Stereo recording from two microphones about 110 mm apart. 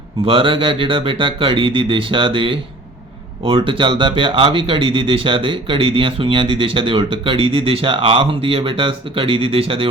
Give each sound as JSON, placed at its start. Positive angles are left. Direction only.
{"t": 0.3, "sound": "speech", "side_deg": -50}